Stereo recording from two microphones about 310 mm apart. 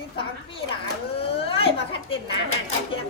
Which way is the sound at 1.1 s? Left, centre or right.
Centre.